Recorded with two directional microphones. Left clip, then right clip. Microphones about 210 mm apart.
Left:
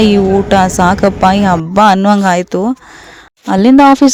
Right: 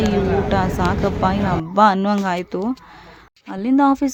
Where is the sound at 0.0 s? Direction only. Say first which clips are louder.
Left 9 dB; 35° left (ahead or behind).